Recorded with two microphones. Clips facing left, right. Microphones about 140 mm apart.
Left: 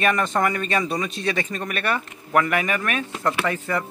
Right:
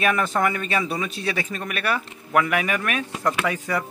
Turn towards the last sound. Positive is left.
turn(degrees=-10)  # may be behind; listen again after turning